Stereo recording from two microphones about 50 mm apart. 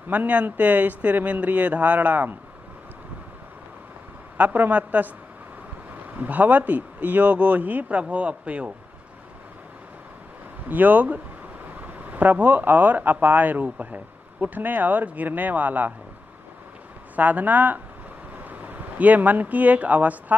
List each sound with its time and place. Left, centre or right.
0.1 s speech: right
4.4 s speech: right
6.1 s speech: right
10.7 s speech: right
17.1 s speech: right